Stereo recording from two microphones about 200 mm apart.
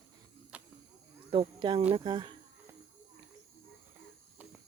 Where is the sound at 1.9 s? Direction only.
25° right (ahead or behind).